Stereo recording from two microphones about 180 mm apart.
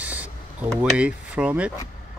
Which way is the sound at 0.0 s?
10° right (ahead or behind).